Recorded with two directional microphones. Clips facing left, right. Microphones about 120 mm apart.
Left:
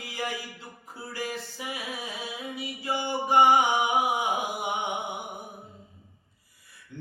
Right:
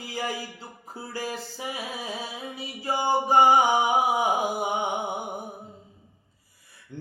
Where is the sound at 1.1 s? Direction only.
35° right (ahead or behind).